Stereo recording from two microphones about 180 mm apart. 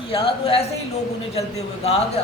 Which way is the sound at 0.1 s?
30° left (ahead or behind).